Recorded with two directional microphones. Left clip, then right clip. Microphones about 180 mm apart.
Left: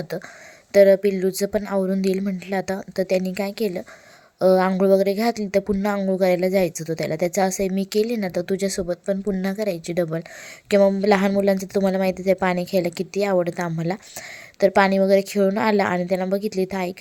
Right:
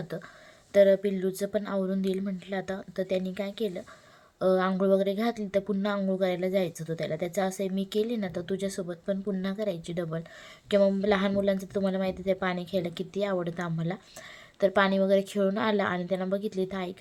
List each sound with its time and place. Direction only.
0.1 s speech: 35° left (ahead or behind)